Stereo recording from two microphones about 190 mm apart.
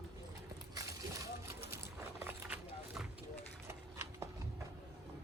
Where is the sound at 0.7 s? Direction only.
20° right (ahead or behind).